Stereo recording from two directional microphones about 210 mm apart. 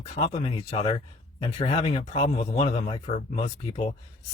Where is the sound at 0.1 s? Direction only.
30° left (ahead or behind).